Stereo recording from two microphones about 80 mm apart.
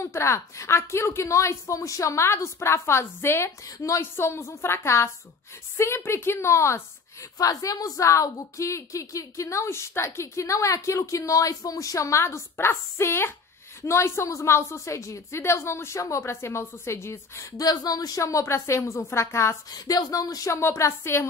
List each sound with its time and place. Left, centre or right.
0.0 s a woman's voice: left
19.7 s a woman's voice: left